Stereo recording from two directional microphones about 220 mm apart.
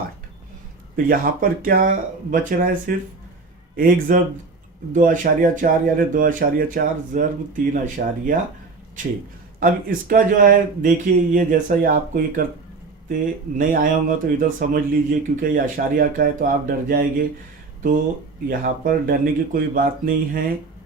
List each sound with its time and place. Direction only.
0.9 s speech: 40° right (ahead or behind)
9.6 s speech: 40° right (ahead or behind)
13.6 s speech: 35° right (ahead or behind)
18.4 s speech: 40° right (ahead or behind)